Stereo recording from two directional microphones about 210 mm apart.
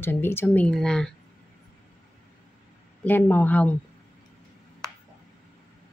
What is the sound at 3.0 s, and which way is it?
Speech, 10° left (ahead or behind).